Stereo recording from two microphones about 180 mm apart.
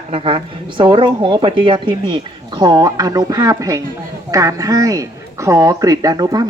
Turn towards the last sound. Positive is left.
turn(degrees=-20)  # may be behind; listen again after turning